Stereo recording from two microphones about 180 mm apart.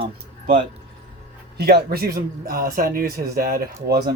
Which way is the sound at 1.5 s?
60° right (ahead or behind).